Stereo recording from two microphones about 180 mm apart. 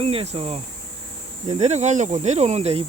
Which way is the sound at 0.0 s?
30° right (ahead or behind).